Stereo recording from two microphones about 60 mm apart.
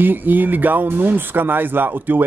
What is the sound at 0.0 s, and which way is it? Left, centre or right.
Speech, right.